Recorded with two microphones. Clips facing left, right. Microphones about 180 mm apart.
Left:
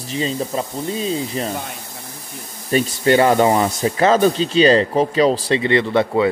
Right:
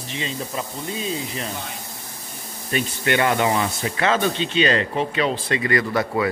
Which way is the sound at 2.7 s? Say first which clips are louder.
Left 7 dB; 35° left (ahead or behind).